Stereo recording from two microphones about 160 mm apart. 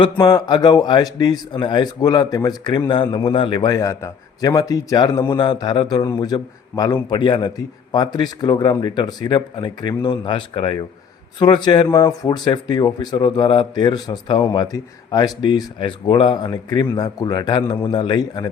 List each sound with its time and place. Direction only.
0.0 s a man's voice: 25° left (ahead or behind)